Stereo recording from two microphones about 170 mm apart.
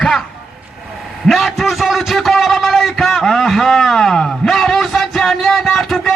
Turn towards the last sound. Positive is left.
turn(degrees=0)  # may be behind; listen again after turning